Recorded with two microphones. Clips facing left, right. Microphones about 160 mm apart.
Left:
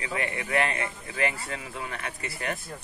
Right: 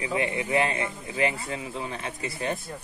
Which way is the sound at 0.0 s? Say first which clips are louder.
Right 4 dB; 20° right (ahead or behind).